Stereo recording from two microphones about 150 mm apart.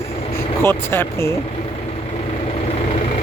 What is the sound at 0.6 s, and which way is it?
Speech, 15° left (ahead or behind).